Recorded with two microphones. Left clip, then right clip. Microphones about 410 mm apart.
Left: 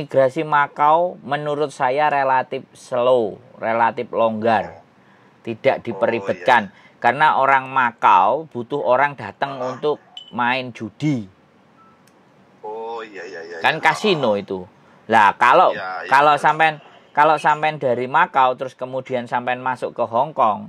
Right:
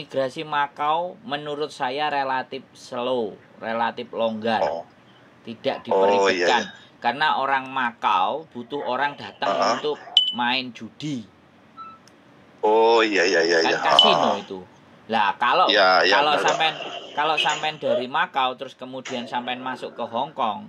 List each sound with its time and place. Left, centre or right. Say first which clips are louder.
0.1 s speech: left 9 dB; left
6.4 s speech: left 5 dB; left
9.8 s speech: left 5 dB; left
10.3 s speech: left 3 dB; left
12.6 s speech: right 13 dB; right
13.6 s speech: left 3 dB; left
15.7 s speech: right 10 dB; right
16.1 s speech: left 5 dB; left